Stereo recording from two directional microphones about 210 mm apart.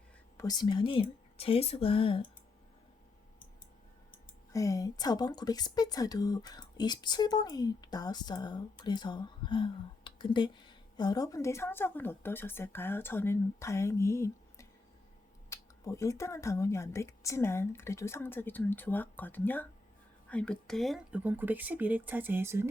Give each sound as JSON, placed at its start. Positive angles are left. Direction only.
{"t": 0.3, "sound": "a woman's voice", "side_deg": 20}
{"t": 4.5, "sound": "a woman's voice", "side_deg": 15}